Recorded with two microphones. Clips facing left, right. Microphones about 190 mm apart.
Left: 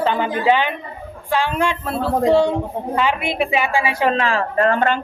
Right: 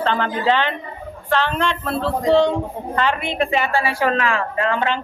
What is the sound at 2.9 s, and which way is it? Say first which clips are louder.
A woman's voice: left 1 dB; 10° left (ahead or behind).